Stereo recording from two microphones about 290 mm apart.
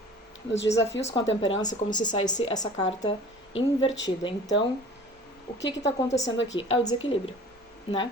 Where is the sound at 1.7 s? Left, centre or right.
Left.